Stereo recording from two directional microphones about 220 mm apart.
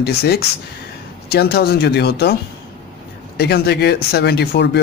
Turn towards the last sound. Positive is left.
turn(degrees=50)  # may be behind; listen again after turning